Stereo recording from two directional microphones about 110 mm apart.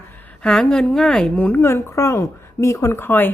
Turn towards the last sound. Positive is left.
turn(degrees=20)  # may be behind; listen again after turning